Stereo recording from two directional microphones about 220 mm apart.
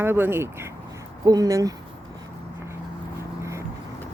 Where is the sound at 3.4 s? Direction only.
15° right (ahead or behind).